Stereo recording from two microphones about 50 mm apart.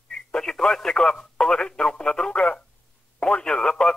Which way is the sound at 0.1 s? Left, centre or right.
Centre.